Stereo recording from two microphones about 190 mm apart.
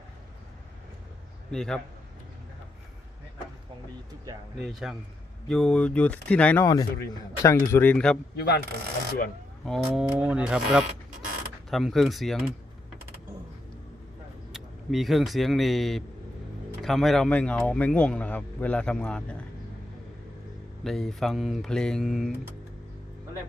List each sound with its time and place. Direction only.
1.5 s speech: 5° left (ahead or behind)
4.6 s speech: centre (ahead or behind)
8.4 s speech: 60° left (ahead or behind)
9.6 s speech: centre (ahead or behind)
14.5 s speech: centre (ahead or behind)
20.8 s speech: centre (ahead or behind)